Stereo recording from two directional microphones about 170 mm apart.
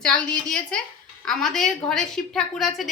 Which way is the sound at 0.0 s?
5° left (ahead or behind).